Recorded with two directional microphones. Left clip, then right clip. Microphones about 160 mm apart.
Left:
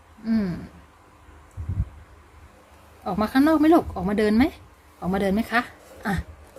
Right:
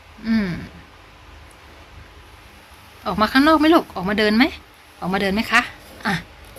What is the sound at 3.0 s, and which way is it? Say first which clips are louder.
Speech: right 5 dB; 20° left (ahead or behind).